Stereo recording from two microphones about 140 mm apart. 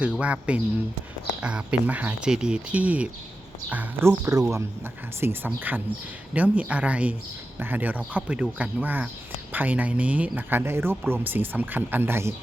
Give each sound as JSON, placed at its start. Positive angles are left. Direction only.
{"t": 0.2, "sound": "speech", "side_deg": -10}